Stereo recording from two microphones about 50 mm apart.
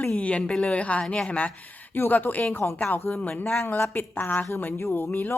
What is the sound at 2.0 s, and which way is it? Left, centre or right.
Speech, left.